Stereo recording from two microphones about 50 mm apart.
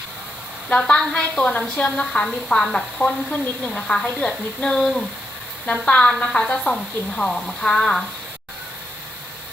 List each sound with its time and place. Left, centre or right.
0.8 s speech: centre
5.6 s speech: left